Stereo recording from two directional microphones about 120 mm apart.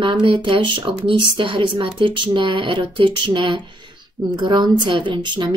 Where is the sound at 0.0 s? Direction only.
45° right (ahead or behind).